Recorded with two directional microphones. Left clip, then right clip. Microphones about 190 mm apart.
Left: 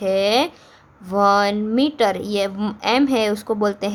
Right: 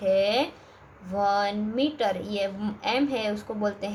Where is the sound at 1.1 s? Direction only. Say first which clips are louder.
Left 8 dB; 30° left (ahead or behind).